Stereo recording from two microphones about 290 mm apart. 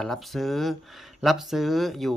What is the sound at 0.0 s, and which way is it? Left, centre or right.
Speech, centre.